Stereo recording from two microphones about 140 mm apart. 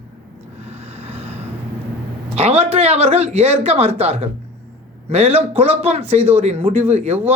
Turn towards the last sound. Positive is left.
turn(degrees=-45)  # may be behind; listen again after turning